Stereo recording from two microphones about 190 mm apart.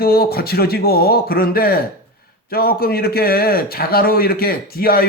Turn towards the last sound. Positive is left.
turn(degrees=50)  # may be behind; listen again after turning